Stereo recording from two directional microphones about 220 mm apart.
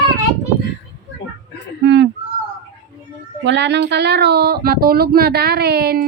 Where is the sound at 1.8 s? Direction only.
55° right (ahead or behind).